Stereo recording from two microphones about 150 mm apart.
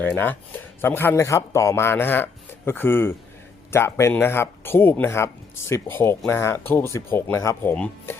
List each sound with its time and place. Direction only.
0.0 s speech: 10° left (ahead or behind)